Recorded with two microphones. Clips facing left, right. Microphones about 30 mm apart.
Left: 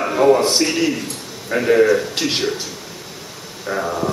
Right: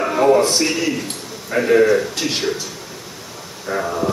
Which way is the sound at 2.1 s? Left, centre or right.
Centre.